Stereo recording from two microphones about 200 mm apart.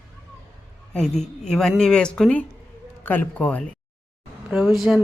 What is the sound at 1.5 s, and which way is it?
A woman's voice, centre (ahead or behind).